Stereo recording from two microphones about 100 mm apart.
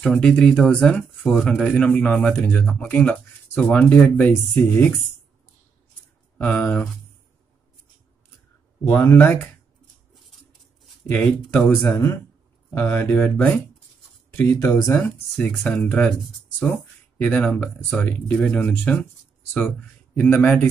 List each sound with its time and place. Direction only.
0.0 s speech: 10° left (ahead or behind)
1.9 s speech: 15° left (ahead or behind)
6.3 s speech: 15° left (ahead or behind)
8.8 s speech: 20° left (ahead or behind)
11.1 s speech: 10° left (ahead or behind)
12.7 s speech: 25° left (ahead or behind)
14.5 s speech: 35° left (ahead or behind)
15.3 s speech: 10° left (ahead or behind)
20.2 s speech: 10° left (ahead or behind)